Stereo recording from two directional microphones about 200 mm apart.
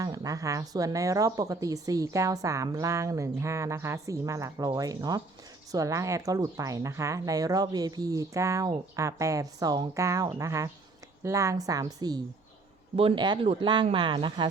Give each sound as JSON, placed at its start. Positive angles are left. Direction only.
{"t": 0.0, "sound": "a woman's voice", "side_deg": -15}